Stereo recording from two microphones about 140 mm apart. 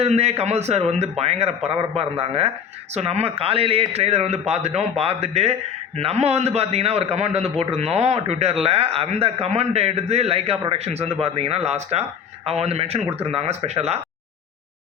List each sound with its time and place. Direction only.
0.0 s speech: 50° right (ahead or behind)